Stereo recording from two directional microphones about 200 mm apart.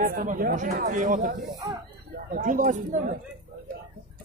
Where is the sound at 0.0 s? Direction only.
40° right (ahead or behind).